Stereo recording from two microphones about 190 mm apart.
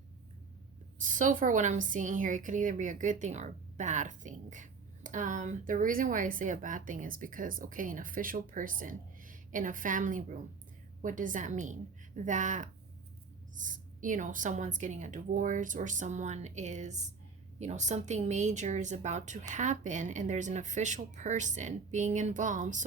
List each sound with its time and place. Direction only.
1.0 s a woman's voice: 45° right (ahead or behind)